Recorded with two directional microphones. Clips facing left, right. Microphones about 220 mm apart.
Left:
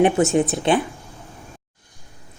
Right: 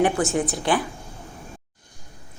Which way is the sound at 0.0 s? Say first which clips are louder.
Left 5 dB; 25° left (ahead or behind).